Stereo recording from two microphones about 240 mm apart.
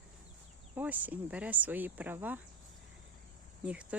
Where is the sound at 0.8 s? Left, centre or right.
Centre.